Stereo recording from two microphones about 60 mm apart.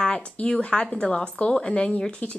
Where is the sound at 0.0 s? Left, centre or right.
Centre.